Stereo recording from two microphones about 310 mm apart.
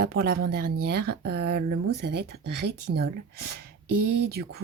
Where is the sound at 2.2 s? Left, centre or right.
Right.